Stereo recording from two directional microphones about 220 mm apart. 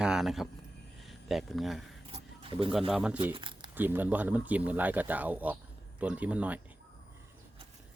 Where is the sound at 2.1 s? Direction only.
25° right (ahead or behind).